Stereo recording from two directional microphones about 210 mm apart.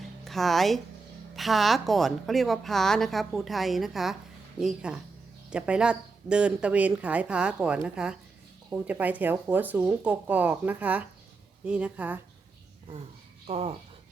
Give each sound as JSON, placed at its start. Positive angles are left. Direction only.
{"t": 0.0, "sound": "a sound", "side_deg": 0}
{"t": 1.4, "sound": "a woman's voice", "side_deg": 0}
{"t": 13.5, "sound": "speech", "side_deg": -30}